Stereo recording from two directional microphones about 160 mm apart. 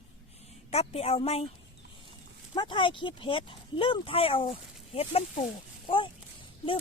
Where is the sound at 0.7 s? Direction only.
40° left (ahead or behind).